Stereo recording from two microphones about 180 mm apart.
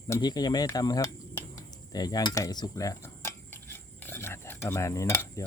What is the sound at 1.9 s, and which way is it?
Cutlery, 20° left (ahead or behind).